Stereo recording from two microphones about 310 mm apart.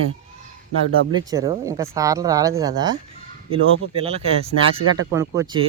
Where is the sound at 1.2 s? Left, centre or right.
Centre.